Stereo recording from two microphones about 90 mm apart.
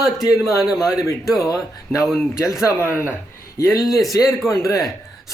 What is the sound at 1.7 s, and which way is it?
Speech, 40° left (ahead or behind).